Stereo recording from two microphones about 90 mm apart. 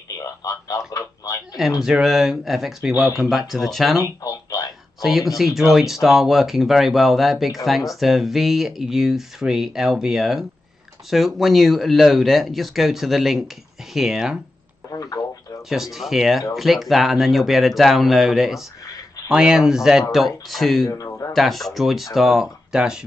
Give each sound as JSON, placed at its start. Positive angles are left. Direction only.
{"t": 0.2, "sound": "speech", "side_deg": 40}
{"t": 1.8, "sound": "speech", "side_deg": -5}
{"t": 4.0, "sound": "speech", "side_deg": 45}
{"t": 5.0, "sound": "speech", "side_deg": 0}
{"t": 14.9, "sound": "a sound", "side_deg": 40}
{"t": 15.7, "sound": "speech", "side_deg": -5}
{"t": 20.9, "sound": "a sound", "side_deg": 40}
{"t": 21.3, "sound": "speech", "side_deg": 0}